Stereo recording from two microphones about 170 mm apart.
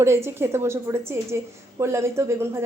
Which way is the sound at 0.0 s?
15° right (ahead or behind).